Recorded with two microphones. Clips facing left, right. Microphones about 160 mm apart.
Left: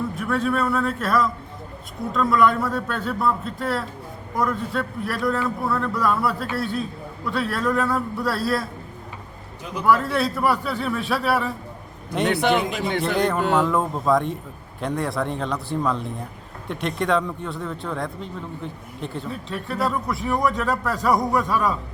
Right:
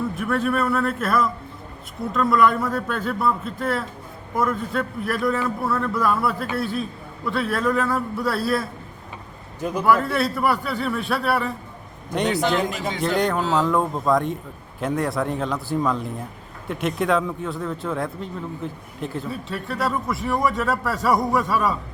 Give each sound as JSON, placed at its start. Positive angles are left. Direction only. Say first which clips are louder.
{"t": 0.2, "sound": "a man's voice", "louder": "even", "side_deg": 0}
{"t": 9.6, "sound": "a man's voice", "louder": "right 6 dB", "side_deg": -45}
{"t": 9.8, "sound": "a man's voice", "louder": "even", "side_deg": 0}
{"t": 13.1, "sound": "a man's voice", "louder": "left 1 dB", "side_deg": 0}